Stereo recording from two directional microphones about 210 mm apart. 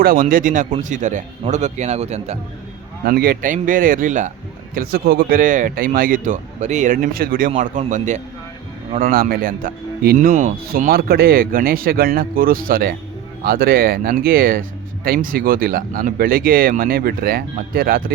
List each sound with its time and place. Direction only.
0.0 s a man's voice: 45° right (ahead or behind)
3.0 s a man's voice: 45° right (ahead or behind)